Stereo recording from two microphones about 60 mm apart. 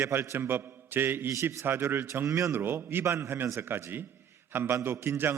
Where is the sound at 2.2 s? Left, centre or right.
Right.